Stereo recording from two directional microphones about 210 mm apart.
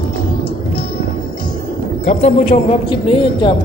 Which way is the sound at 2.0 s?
30° left (ahead or behind).